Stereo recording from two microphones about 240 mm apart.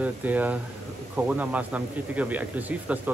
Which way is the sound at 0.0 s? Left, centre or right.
Centre.